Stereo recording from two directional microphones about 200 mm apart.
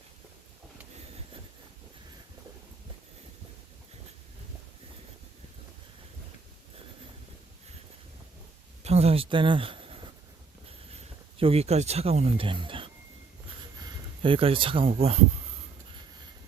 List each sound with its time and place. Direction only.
8.8 s speech: 30° right (ahead or behind)
10.7 s a sound: 30° right (ahead or behind)
14.2 s speech: 25° right (ahead or behind)